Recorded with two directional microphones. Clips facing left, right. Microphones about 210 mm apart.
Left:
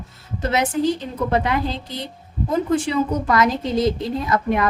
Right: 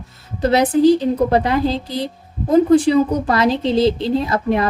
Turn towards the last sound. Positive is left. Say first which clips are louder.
# right 3 dB
turn(degrees=-30)  # may be behind; listen again after turning